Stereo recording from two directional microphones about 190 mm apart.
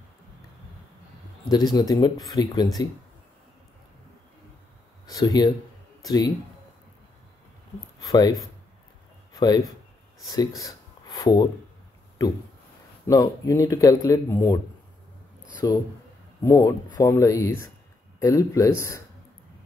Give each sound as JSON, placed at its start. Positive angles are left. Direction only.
{"t": 1.5, "sound": "speech", "side_deg": 20}
{"t": 5.0, "sound": "speech", "side_deg": 20}
{"t": 8.0, "sound": "speech", "side_deg": 20}
{"t": 9.3, "sound": "a sound", "side_deg": 20}
{"t": 10.3, "sound": "speech", "side_deg": 20}
{"t": 13.0, "sound": "speech", "side_deg": 20}
{"t": 15.6, "sound": "speech", "side_deg": 20}